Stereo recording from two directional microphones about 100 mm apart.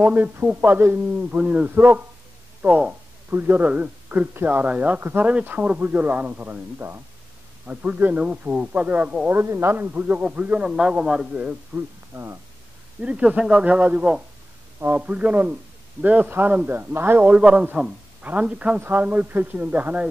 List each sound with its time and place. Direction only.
0.0 s a man's voice: 15° right (ahead or behind)
12.1 s speech: 25° right (ahead or behind)
13.0 s a man's voice: 10° right (ahead or behind)